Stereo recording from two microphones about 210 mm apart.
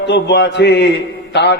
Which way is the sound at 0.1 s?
55° left (ahead or behind).